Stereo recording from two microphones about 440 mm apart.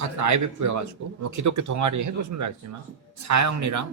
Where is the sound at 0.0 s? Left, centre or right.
Right.